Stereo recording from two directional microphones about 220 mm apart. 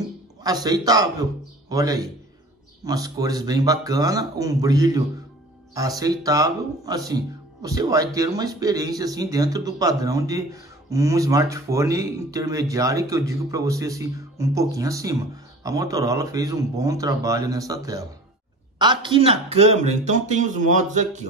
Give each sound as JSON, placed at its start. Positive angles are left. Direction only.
{"t": 0.4, "sound": "speech", "side_deg": -15}